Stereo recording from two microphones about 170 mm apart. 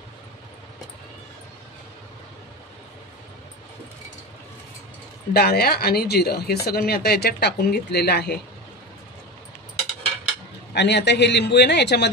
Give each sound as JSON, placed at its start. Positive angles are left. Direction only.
{"t": 5.3, "sound": "speech", "side_deg": 65}
{"t": 10.7, "sound": "a man's voice", "side_deg": 90}